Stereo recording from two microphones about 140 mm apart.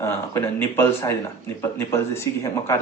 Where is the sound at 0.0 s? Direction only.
20° left (ahead or behind).